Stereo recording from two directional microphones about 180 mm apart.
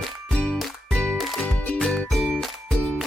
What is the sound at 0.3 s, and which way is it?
Music, 5° left (ahead or behind).